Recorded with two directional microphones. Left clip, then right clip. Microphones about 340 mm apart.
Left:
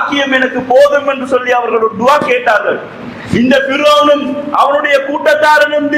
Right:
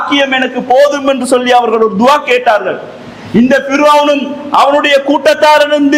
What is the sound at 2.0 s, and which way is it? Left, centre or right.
Speech, right.